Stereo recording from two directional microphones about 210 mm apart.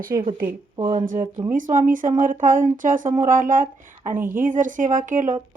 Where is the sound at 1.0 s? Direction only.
35° right (ahead or behind).